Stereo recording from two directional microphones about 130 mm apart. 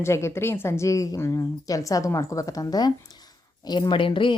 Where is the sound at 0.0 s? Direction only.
20° left (ahead or behind).